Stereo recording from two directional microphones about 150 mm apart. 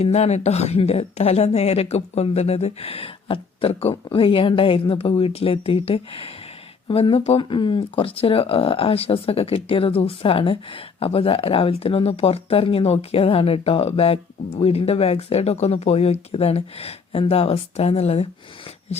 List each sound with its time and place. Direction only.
0.0 s speech: 45° left (ahead or behind)